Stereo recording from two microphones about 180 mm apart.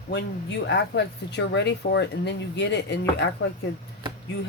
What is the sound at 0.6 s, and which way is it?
Speech, 70° left (ahead or behind).